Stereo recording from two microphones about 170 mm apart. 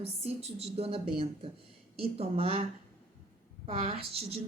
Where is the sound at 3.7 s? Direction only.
35° right (ahead or behind).